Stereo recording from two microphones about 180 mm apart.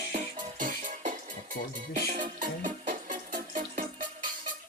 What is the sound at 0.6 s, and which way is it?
Music, 45° right (ahead or behind).